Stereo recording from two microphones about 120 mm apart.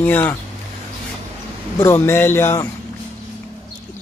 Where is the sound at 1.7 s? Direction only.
20° left (ahead or behind).